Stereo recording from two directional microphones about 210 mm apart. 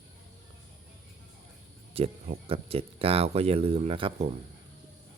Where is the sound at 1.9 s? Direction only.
25° right (ahead or behind).